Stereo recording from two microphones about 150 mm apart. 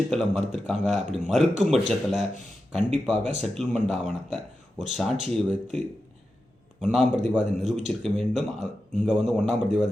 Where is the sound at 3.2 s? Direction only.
50° right (ahead or behind).